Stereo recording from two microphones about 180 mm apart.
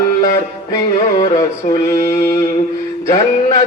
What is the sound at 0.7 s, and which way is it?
Mantra, 20° left (ahead or behind).